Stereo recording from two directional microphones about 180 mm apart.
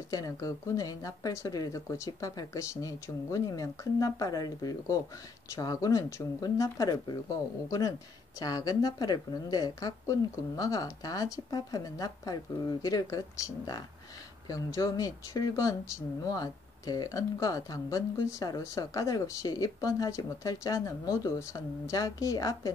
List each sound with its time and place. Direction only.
0.1 s speech: 20° left (ahead or behind)